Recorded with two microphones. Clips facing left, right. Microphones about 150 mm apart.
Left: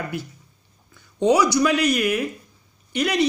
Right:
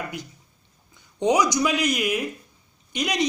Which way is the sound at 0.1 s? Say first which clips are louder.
Left 5 dB; 15° right (ahead or behind).